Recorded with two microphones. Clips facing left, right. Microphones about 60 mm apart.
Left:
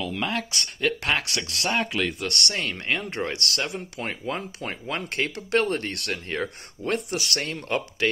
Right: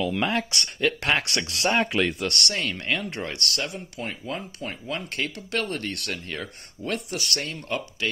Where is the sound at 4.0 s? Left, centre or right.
Left.